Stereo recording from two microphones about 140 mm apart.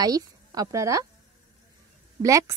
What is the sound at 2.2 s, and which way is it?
Speech, 25° right (ahead or behind).